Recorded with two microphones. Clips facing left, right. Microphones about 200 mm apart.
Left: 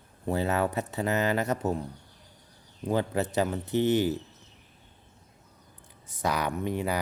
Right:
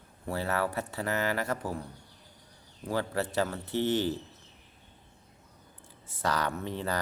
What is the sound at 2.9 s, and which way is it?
Speech, 20° left (ahead or behind).